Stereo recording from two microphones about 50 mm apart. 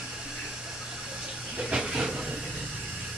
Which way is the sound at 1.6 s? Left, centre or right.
Centre.